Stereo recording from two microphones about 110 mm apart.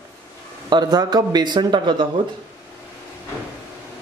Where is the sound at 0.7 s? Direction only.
40° right (ahead or behind).